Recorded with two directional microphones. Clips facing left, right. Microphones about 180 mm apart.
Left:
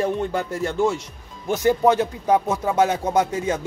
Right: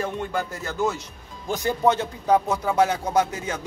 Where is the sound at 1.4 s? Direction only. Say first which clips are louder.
Left 4 dB; 20° left (ahead or behind).